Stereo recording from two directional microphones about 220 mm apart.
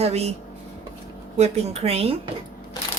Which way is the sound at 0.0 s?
30° right (ahead or behind).